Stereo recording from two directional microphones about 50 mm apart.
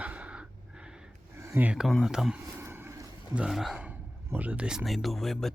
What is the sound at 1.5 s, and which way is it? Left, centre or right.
Speech, right.